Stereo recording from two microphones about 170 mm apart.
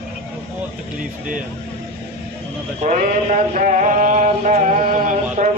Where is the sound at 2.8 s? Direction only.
50° right (ahead or behind).